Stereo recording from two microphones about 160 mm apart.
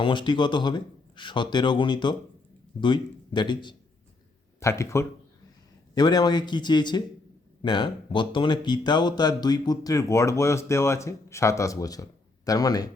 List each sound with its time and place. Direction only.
0.0 s speech: 30° left (ahead or behind)
4.6 s speech: 20° left (ahead or behind)